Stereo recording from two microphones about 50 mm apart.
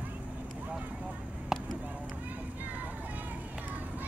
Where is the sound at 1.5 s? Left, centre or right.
Centre.